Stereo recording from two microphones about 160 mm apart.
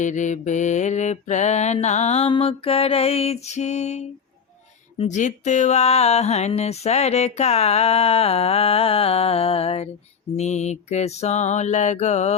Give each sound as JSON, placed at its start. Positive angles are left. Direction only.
{"t": 0.0, "sound": "mantra", "side_deg": 50}
{"t": 4.9, "sound": "a sound", "side_deg": 50}
{"t": 10.3, "sound": "mantra", "side_deg": 45}